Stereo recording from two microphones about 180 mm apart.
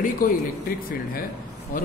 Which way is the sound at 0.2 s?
50° left (ahead or behind).